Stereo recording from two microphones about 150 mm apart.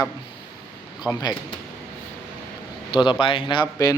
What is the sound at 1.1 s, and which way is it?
Speech, 25° left (ahead or behind).